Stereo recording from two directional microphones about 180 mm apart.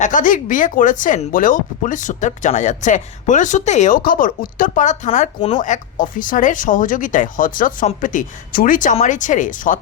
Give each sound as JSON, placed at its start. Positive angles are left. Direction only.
{"t": 0.0, "sound": "speech", "side_deg": 45}